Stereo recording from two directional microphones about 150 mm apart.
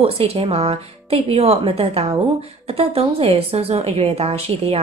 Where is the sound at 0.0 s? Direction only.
40° right (ahead or behind).